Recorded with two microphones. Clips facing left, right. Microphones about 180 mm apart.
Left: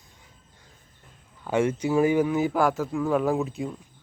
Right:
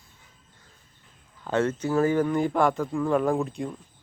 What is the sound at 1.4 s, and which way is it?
Speech, 10° left (ahead or behind).